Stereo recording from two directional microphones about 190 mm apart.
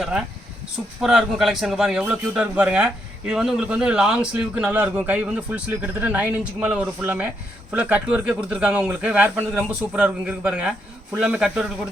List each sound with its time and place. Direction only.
1.0 s a man's voice: centre (ahead or behind)